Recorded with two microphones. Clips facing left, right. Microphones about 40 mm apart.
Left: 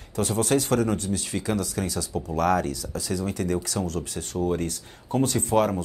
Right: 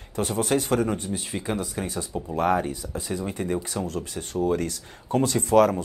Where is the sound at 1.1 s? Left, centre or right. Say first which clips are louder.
Left 2 dB; right.